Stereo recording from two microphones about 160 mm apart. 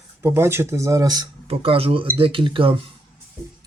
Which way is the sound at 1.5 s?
35° right (ahead or behind).